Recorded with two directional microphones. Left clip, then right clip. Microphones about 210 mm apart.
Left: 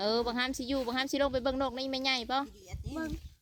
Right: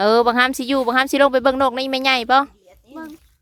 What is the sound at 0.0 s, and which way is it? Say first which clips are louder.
Speech: right 16 dB; 45° right (ahead or behind).